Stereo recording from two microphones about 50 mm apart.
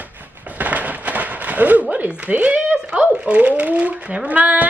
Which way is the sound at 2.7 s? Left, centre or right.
Centre.